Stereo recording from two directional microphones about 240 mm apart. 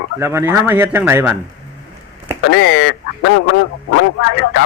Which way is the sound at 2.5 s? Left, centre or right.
Left.